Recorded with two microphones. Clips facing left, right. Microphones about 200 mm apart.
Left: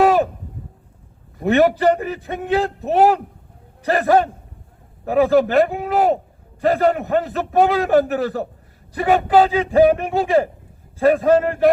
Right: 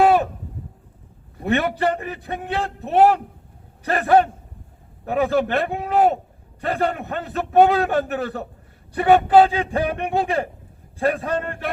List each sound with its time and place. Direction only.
1.5 s a man's voice: 40° left (ahead or behind)